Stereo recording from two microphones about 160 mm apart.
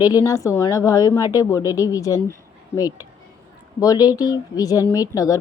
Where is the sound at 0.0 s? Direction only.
20° left (ahead or behind).